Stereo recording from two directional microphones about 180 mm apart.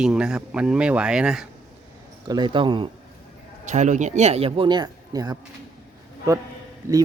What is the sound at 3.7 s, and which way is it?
Speech, 40° right (ahead or behind).